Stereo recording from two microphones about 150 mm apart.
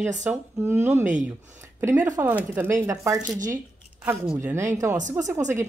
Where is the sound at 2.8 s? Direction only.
20° right (ahead or behind).